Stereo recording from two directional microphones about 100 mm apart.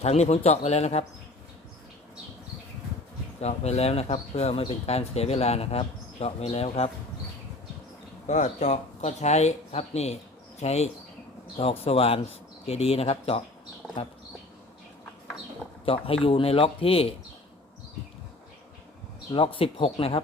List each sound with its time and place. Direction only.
0.0 s speech: 90° left
3.4 s speech: 90° left
9.0 s speech: 90° left
11.5 s speech: 75° left (ahead or behind)
15.9 s speech: 70° left (ahead or behind)
19.3 s speech: 65° left (ahead or behind)